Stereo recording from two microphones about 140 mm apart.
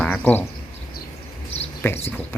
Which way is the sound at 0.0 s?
10° left (ahead or behind).